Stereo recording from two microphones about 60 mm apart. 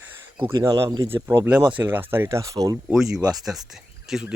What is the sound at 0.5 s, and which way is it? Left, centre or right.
Speech, right.